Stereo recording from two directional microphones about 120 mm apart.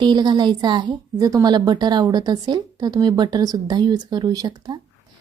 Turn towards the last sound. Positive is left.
turn(degrees=-35)  # may be behind; listen again after turning